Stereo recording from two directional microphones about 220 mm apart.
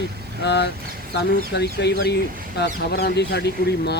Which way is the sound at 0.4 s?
50° left (ahead or behind).